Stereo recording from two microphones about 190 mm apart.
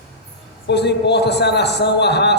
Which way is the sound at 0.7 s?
60° left (ahead or behind).